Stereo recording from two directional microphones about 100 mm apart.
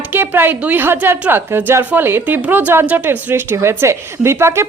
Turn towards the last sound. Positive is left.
turn(degrees=-25)  # may be behind; listen again after turning